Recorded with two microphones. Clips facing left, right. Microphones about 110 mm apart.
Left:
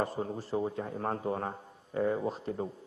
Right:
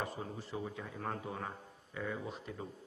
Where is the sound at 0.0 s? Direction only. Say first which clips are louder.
Left 8 dB; 35° left (ahead or behind).